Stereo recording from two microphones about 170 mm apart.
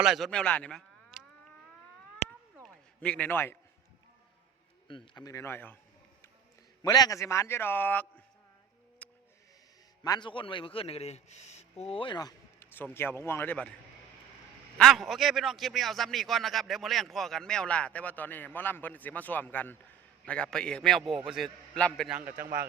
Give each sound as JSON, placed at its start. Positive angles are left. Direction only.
{"t": 0.0, "sound": "speech", "side_deg": 0}
{"t": 2.6, "sound": "a man's voice", "side_deg": 5}
{"t": 4.9, "sound": "a man's voice", "side_deg": 25}
{"t": 6.8, "sound": "a man's voice", "side_deg": 20}
{"t": 9.0, "sound": "music", "side_deg": 10}
{"t": 10.0, "sound": "a man's voice", "side_deg": 25}
{"t": 12.5, "sound": "a man's voice", "side_deg": 10}
{"t": 14.8, "sound": "a man's voice", "side_deg": 0}